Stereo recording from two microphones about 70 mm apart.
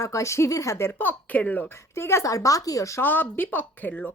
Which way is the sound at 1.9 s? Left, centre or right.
Left.